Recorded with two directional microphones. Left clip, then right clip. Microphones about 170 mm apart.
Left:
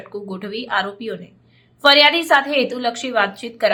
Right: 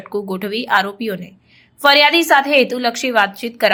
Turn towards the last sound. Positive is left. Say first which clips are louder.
# right 3 dB
turn(degrees=-25)  # may be behind; listen again after turning